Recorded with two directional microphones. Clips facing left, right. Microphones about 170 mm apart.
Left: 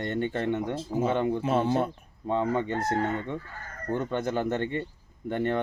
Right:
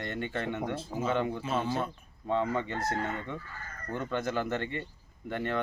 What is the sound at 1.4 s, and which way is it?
Speech, 60° left (ahead or behind).